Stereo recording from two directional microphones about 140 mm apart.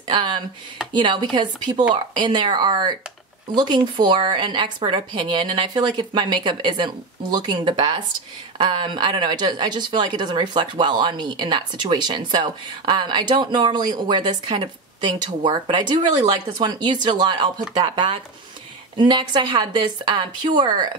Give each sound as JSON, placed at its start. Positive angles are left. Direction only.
{"t": 0.0, "sound": "a woman's voice", "side_deg": -35}